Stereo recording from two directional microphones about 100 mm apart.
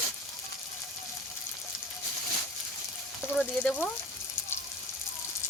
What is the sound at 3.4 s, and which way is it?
Speech, 15° left (ahead or behind).